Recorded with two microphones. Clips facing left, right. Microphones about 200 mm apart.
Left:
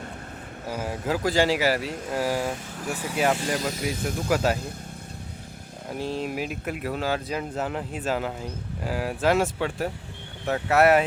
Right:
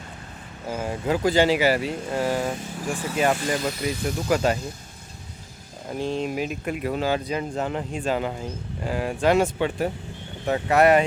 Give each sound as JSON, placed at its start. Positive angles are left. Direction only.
{"t": 0.7, "sound": "speech", "side_deg": 5}
{"t": 3.6, "sound": "speech", "side_deg": 45}
{"t": 4.3, "sound": "speech", "side_deg": 5}
{"t": 5.9, "sound": "speech", "side_deg": 5}